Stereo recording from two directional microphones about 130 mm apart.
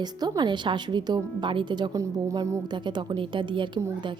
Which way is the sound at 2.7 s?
35° right (ahead or behind).